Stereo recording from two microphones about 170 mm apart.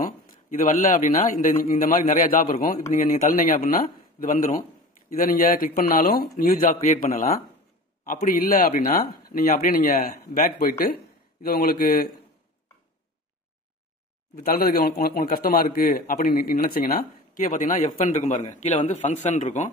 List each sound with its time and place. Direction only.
0.0 s a man's voice: 50° left (ahead or behind)
11.4 s speech: 60° left (ahead or behind)
14.5 s a man's voice: 65° left (ahead or behind); by 19.6 s 45° left (ahead or behind)